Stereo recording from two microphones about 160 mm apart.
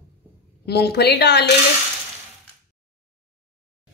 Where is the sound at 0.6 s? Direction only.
90° left.